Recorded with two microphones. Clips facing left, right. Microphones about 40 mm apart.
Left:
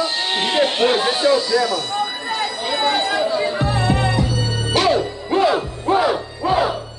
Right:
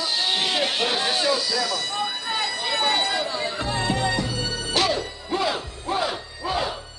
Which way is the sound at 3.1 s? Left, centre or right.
Left.